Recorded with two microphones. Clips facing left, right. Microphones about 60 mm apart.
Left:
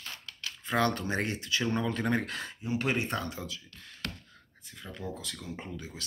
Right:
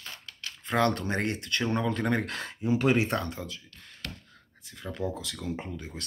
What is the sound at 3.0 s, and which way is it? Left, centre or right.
Speech, right.